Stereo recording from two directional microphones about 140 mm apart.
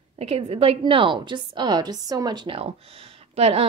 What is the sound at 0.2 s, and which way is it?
A woman's voice, 45° right (ahead or behind).